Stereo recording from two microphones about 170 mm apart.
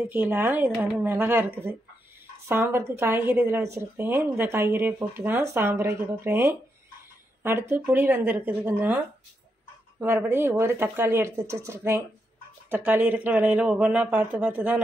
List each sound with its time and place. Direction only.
0.1 s a woman's voice: 10° right (ahead or behind)